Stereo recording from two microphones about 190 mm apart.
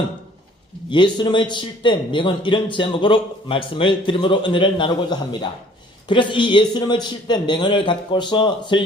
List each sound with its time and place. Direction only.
0.9 s a man's voice: 25° left (ahead or behind)